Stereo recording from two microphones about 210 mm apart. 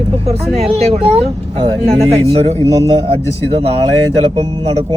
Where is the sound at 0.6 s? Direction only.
30° right (ahead or behind).